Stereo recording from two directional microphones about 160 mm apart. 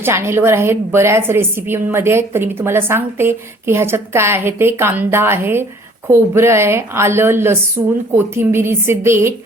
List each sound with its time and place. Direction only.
0.0 s a woman's voice: 15° right (ahead or behind)